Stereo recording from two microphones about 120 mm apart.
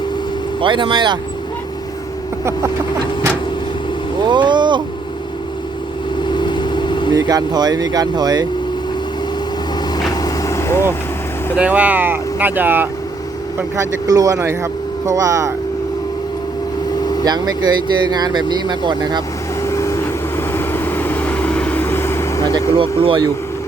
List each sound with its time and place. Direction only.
0.6 s speech: 40° right (ahead or behind)
4.3 s speech: 40° right (ahead or behind)
6.1 s vehicle: 40° left (ahead or behind)
7.1 s speech: 35° right (ahead or behind)
10.0 s vehicle: 30° left (ahead or behind)
11.5 s speech: 10° right (ahead or behind)
13.6 s speech: 30° right (ahead or behind)
17.0 s vehicle: 35° left (ahead or behind)
17.2 s speech: 35° right (ahead or behind)
19.6 s vehicle: 25° left (ahead or behind)
22.8 s speech: 45° right (ahead or behind)